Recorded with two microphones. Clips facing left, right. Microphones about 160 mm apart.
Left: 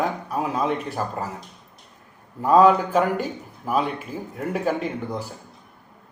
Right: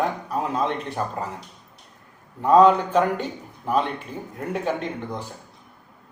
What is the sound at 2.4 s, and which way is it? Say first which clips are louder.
A man's voice: even; 5° left (ahead or behind).